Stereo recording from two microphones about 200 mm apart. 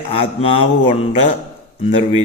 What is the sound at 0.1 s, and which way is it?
A man's voice, 30° left (ahead or behind).